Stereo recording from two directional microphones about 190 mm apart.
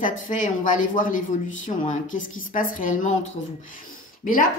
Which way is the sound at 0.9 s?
45° left (ahead or behind).